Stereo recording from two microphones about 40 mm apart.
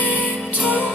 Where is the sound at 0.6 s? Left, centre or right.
Left.